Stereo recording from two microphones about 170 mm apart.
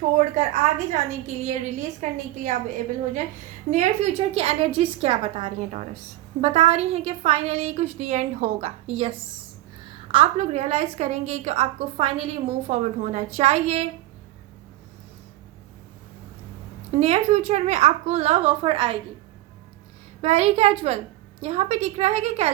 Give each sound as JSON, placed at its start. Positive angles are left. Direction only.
{"t": 1.4, "sound": "a woman's voice", "side_deg": -40}
{"t": 16.9, "sound": "a woman's voice", "side_deg": -35}
{"t": 20.2, "sound": "a woman's voice", "side_deg": -35}